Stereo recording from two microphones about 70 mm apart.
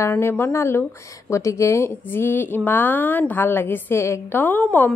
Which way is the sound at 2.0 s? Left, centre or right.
Left.